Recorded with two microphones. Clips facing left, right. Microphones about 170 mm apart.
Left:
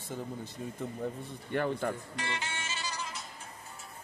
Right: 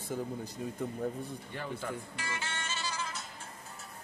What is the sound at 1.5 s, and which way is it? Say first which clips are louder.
Speech: left 9 dB; 60° left (ahead or behind).